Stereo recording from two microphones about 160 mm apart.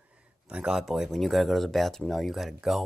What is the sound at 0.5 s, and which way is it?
Speech, 5° right (ahead or behind).